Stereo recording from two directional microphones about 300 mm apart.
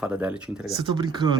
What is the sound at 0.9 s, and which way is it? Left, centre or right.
Speech, centre.